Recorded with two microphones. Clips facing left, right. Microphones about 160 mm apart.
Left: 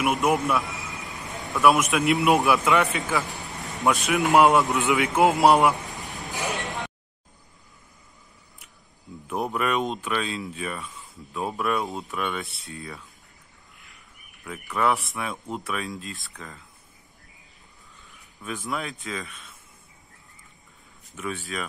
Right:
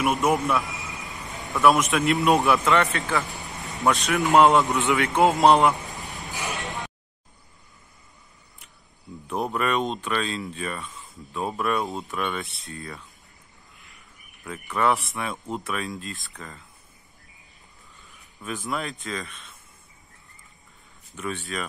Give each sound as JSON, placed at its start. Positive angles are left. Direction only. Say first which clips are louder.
{"t": 0.0, "sound": "a man's voice", "louder": "even", "side_deg": 0}
{"t": 5.9, "sound": "a sound", "louder": "even", "side_deg": 20}
{"t": 6.1, "sound": "a sound", "louder": "left 3 dB", "side_deg": 0}
{"t": 9.3, "sound": "speech", "louder": "even", "side_deg": 5}
{"t": 14.4, "sound": "speech", "louder": "right 1 dB", "side_deg": 0}
{"t": 18.0, "sound": "speech", "louder": "right 1 dB", "side_deg": 0}
{"t": 21.2, "sound": "speech", "louder": "right 1 dB", "side_deg": 0}